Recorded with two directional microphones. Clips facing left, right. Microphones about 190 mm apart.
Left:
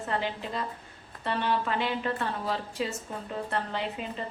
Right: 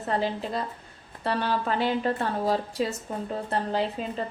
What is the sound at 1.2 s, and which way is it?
A woman's voice, 40° right (ahead or behind).